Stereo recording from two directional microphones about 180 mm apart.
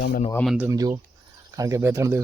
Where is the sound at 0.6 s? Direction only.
20° right (ahead or behind).